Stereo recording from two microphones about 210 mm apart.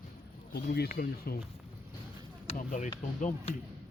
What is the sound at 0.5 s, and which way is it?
Speech, 50° left (ahead or behind).